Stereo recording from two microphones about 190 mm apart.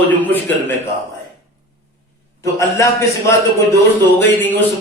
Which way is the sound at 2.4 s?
15° left (ahead or behind).